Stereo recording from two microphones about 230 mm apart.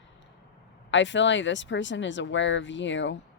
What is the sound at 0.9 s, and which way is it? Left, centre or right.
Speech, left.